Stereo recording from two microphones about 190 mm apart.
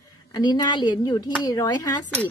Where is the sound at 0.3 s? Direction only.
20° left (ahead or behind).